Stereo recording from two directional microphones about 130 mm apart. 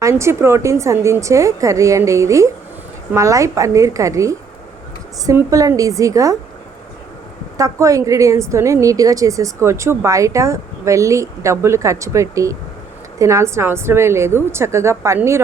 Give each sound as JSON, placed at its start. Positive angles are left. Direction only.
{"t": 0.0, "sound": "a woman's voice", "side_deg": -20}
{"t": 7.6, "sound": "a woman's voice", "side_deg": -25}